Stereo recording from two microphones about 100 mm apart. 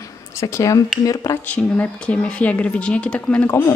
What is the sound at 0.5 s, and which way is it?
Speech, 30° left (ahead or behind).